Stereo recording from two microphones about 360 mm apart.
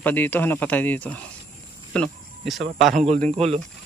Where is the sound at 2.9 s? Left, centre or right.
Centre.